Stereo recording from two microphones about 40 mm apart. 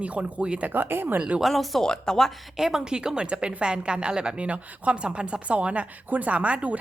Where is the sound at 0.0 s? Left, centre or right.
Right.